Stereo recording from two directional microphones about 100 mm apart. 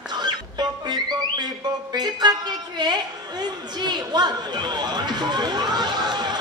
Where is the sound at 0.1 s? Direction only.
45° right (ahead or behind).